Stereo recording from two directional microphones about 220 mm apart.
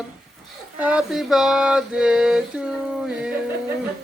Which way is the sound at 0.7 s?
5° right (ahead or behind).